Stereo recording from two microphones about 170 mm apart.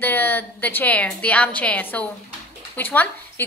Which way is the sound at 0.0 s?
10° left (ahead or behind).